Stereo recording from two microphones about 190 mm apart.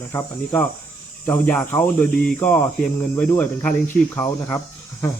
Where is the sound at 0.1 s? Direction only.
10° left (ahead or behind).